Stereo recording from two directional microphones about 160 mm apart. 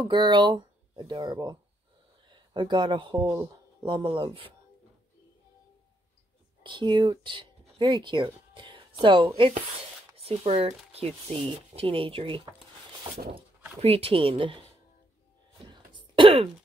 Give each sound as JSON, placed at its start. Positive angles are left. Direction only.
{"t": 0.0, "sound": "speech", "side_deg": -25}
{"t": 6.6, "sound": "speech", "side_deg": -30}
{"t": 13.0, "sound": "dog", "side_deg": -30}
{"t": 13.7, "sound": "speech", "side_deg": -35}
{"t": 15.6, "sound": "throat clearing", "side_deg": -30}